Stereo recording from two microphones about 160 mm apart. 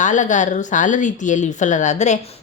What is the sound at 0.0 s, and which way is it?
A woman's voice, 50° left (ahead or behind).